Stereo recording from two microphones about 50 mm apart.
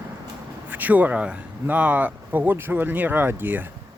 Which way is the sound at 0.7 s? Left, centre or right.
Right.